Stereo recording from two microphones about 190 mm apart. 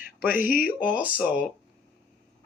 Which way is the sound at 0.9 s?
5° right (ahead or behind).